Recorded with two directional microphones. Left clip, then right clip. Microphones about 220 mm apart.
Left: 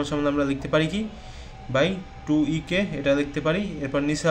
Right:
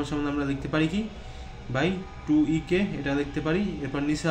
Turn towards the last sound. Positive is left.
turn(degrees=35)  # may be behind; listen again after turning